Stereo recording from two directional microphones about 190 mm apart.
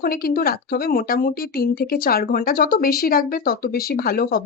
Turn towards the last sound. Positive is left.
turn(degrees=50)  # may be behind; listen again after turning